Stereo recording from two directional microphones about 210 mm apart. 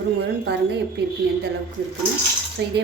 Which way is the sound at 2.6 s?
55° right (ahead or behind).